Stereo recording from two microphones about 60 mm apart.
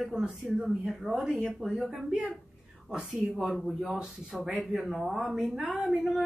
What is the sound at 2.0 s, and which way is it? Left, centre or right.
A woman's voice, centre.